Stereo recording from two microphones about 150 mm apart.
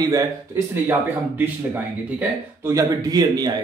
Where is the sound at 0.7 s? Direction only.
15° right (ahead or behind).